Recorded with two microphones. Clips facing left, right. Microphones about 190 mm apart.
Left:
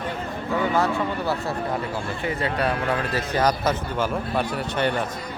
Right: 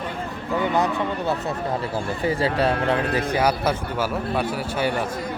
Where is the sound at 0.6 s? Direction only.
20° right (ahead or behind).